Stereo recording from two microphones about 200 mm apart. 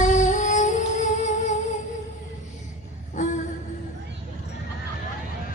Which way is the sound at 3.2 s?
40° left (ahead or behind).